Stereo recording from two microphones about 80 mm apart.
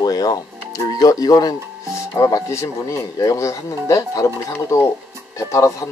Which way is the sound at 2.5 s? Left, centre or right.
Left.